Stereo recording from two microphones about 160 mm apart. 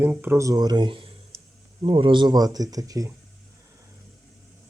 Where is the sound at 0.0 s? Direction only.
10° right (ahead or behind).